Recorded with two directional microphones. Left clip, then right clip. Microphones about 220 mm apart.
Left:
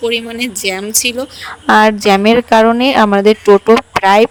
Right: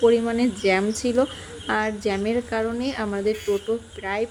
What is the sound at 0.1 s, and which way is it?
A woman's voice, 50° left (ahead or behind).